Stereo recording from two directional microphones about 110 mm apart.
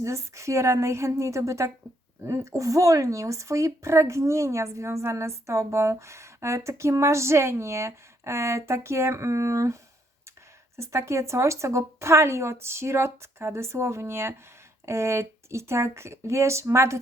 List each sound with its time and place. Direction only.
0.0 s speech: 25° right (ahead or behind)
10.8 s speech: 25° right (ahead or behind)